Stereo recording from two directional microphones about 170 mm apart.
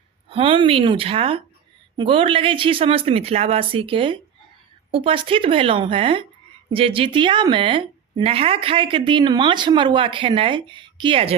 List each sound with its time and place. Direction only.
0.3 s a woman's voice: 30° right (ahead or behind)